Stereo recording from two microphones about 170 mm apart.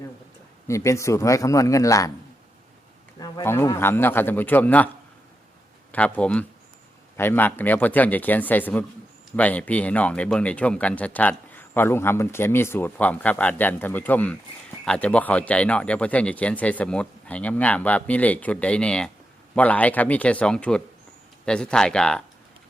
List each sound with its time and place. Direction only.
0.7 s a man's voice: 15° left (ahead or behind)
3.2 s speech: 20° left (ahead or behind)
5.9 s speech: 10° left (ahead or behind)